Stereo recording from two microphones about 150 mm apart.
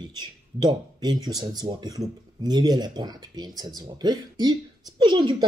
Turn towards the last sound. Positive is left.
turn(degrees=-30)  # may be behind; listen again after turning